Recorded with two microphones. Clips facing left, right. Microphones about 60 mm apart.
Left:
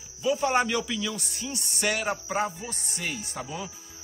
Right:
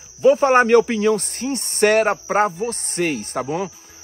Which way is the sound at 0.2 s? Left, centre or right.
Right.